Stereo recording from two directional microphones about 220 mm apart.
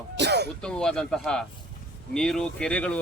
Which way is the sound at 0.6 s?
5° left (ahead or behind).